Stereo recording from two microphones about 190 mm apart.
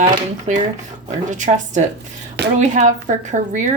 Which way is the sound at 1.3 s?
40° right (ahead or behind).